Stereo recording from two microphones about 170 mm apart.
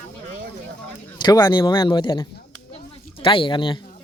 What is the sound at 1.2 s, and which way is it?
A man's voice, 25° left (ahead or behind).